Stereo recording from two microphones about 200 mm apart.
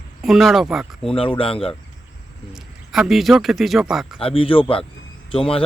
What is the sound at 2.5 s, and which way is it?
Speech, centre (ahead or behind).